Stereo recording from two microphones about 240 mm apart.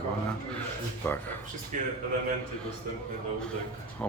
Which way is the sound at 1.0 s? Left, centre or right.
Centre.